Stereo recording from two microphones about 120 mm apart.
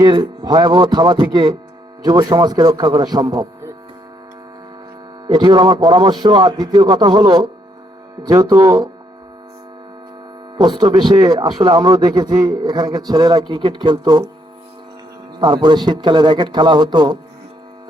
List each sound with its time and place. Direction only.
0.0 s speech: 35° right (ahead or behind)
5.2 s speech: 35° right (ahead or behind)
10.6 s speech: 35° right (ahead or behind)
15.4 s speech: 40° right (ahead or behind)